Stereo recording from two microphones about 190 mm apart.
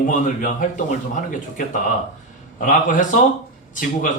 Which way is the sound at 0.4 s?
45° left (ahead or behind).